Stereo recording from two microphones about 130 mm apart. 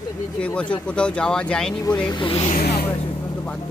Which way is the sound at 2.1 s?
40° left (ahead or behind).